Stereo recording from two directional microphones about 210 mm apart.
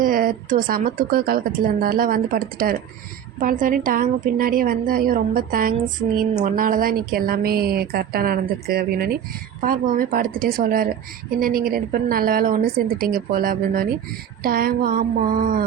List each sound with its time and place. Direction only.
0.0 s a woman's voice: 40° right (ahead or behind)